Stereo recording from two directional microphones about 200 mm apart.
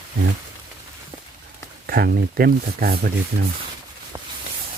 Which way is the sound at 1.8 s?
50° right (ahead or behind).